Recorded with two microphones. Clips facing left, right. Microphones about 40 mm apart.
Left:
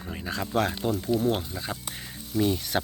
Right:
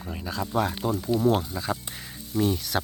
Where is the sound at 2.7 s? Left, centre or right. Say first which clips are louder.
Even; left.